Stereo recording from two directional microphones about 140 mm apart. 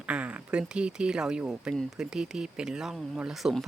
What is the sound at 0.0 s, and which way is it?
Speech, 10° right (ahead or behind).